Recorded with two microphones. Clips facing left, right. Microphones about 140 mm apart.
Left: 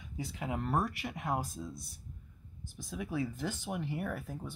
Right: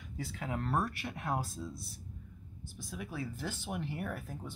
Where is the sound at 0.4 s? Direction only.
10° left (ahead or behind).